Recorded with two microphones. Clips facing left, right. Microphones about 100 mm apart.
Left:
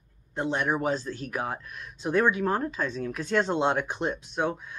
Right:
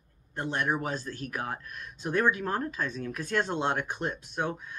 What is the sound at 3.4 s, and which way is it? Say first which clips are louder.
Speech: left 4 dB; 15° left (ahead or behind).